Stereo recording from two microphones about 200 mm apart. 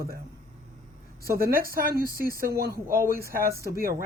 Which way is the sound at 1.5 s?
45° right (ahead or behind).